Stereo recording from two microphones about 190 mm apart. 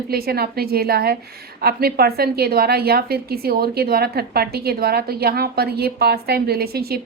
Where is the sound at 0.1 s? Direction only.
55° right (ahead or behind).